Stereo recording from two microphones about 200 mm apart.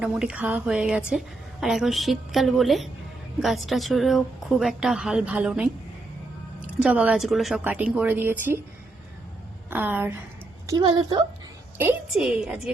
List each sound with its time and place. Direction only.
0.0 s a woman's voice: 5° right (ahead or behind)
9.6 s speech: 10° right (ahead or behind)
10.7 s a woman's voice: 20° right (ahead or behind)
11.8 s a woman's voice: 5° right (ahead or behind)